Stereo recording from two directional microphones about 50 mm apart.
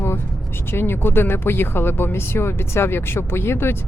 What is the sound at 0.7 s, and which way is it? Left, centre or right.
Speech, left.